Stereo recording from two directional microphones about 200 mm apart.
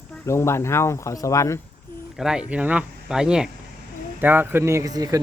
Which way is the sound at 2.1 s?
5° right (ahead or behind).